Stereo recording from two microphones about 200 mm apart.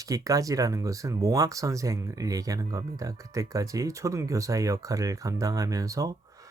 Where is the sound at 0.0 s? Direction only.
15° right (ahead or behind).